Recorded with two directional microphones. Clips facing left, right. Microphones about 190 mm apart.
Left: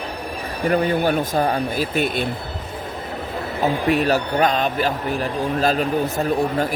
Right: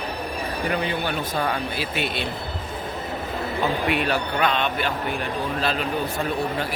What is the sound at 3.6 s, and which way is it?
A man's voice, 40° left (ahead or behind).